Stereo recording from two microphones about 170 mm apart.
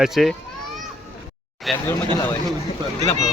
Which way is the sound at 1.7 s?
Centre (ahead or behind).